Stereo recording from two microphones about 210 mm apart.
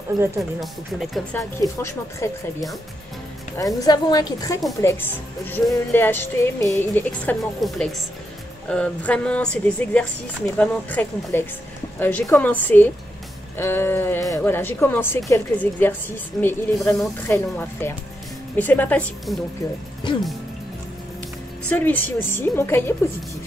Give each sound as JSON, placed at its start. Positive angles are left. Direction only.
{"t": 0.1, "sound": "speech", "side_deg": 0}
{"t": 1.6, "sound": "speech", "side_deg": 15}
{"t": 3.5, "sound": "speech", "side_deg": 15}
{"t": 21.6, "sound": "speech", "side_deg": 10}